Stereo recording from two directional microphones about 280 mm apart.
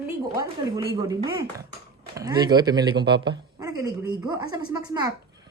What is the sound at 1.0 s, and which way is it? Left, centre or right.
Speech, centre.